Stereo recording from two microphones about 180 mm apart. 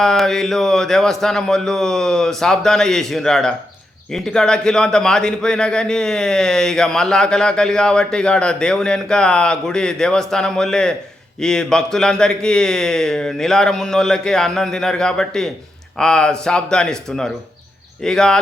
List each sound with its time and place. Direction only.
0.0 s a man's voice: centre (ahead or behind)